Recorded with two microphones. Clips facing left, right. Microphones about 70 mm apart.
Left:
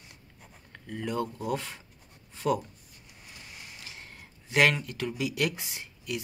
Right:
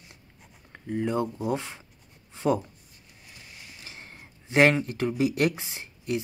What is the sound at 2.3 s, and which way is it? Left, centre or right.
Writing, right.